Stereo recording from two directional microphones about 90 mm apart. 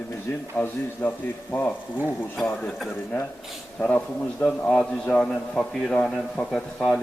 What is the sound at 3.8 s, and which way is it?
A man's voice, 15° left (ahead or behind).